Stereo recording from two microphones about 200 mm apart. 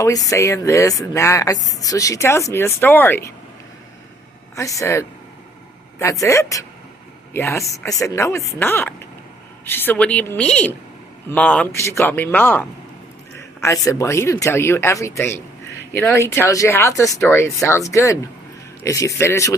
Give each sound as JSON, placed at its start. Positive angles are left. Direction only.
{"t": 0.0, "sound": "speech", "side_deg": 15}
{"t": 4.5, "sound": "speech", "side_deg": 15}